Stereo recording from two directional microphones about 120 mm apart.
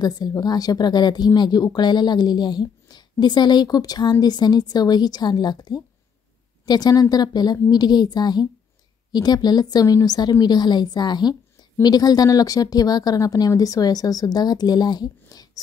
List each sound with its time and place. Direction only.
0.0 s speech: 35° left (ahead or behind)